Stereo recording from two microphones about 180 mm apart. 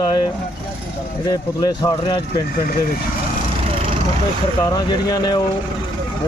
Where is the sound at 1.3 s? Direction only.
20° left (ahead or behind).